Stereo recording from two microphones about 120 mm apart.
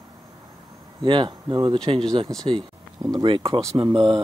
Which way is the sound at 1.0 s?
40° right (ahead or behind).